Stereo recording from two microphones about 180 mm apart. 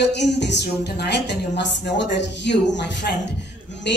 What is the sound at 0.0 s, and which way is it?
A woman's voice, 70° left (ahead or behind).